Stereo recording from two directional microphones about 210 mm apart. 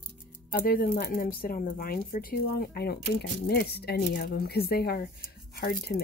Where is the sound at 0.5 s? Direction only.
45° left (ahead or behind).